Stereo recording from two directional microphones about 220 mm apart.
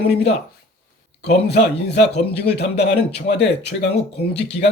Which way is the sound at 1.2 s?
50° left (ahead or behind).